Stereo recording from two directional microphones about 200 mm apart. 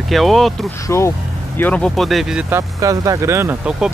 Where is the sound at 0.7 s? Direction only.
15° left (ahead or behind); by 2.6 s 5° right (ahead or behind).